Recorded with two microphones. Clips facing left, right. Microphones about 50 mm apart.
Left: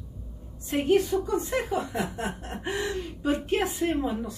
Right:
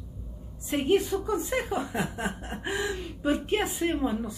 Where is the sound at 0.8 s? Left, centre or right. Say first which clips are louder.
Left 2 dB; centre.